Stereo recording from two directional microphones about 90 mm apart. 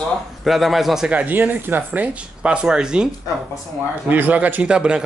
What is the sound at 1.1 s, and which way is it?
Speech, 15° right (ahead or behind).